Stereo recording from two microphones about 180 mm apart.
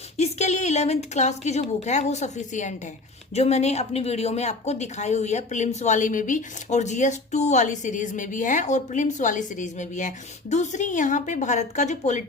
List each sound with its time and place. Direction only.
0.2 s a woman's voice: 40° left (ahead or behind)